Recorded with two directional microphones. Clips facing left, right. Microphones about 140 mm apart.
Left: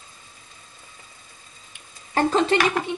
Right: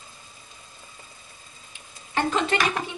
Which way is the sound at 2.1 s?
35° left (ahead or behind).